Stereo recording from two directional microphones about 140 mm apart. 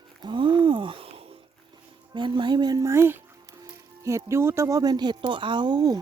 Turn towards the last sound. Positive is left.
turn(degrees=-30)  # may be behind; listen again after turning